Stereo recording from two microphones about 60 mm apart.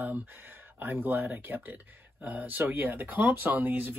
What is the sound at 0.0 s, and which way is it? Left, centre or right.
Speech, right.